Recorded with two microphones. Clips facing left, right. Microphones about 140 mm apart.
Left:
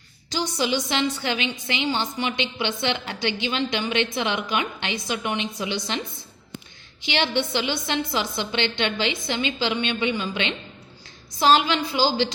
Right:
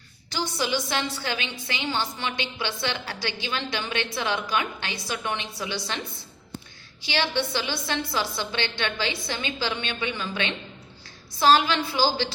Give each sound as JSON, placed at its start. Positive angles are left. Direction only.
{"t": 0.8, "sound": "a woman's voice", "side_deg": 20}
{"t": 7.0, "sound": "a woman's voice", "side_deg": 20}